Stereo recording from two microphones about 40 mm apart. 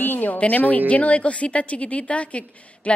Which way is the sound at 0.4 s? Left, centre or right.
Left.